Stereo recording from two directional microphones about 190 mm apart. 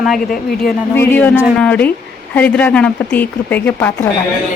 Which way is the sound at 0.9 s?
10° left (ahead or behind).